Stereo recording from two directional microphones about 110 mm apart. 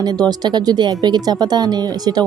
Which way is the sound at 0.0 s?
40° right (ahead or behind).